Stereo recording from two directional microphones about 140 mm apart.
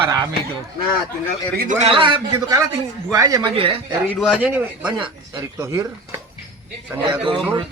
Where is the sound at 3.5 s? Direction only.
40° right (ahead or behind).